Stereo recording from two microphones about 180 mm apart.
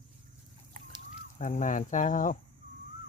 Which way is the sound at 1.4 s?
45° left (ahead or behind).